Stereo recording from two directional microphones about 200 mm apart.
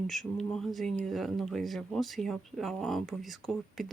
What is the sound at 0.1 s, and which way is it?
Speech, centre (ahead or behind).